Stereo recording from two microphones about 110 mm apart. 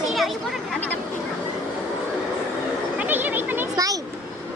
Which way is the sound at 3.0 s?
15° right (ahead or behind).